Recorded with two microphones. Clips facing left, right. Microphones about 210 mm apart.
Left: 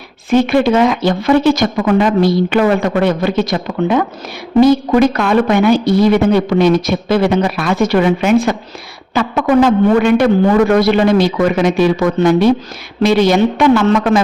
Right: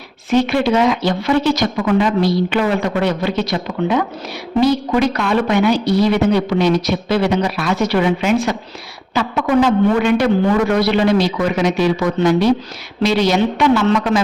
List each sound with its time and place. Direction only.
0.3 s a woman's voice: 50° left (ahead or behind)